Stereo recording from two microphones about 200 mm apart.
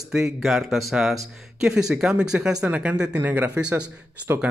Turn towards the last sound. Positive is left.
turn(degrees=-5)  # may be behind; listen again after turning